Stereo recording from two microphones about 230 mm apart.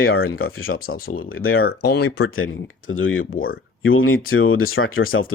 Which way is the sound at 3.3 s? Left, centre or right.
Left.